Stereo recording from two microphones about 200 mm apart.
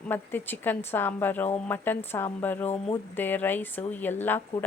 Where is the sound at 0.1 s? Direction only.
10° left (ahead or behind).